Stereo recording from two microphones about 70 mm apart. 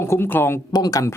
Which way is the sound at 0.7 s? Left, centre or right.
Left.